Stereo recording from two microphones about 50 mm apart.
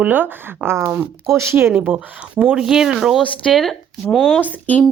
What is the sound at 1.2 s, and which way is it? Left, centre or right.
Speech, right.